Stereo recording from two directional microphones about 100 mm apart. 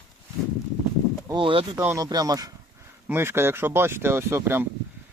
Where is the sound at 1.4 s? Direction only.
60° right (ahead or behind).